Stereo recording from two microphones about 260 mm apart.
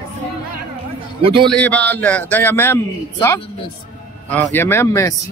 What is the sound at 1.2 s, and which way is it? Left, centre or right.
Speech, centre.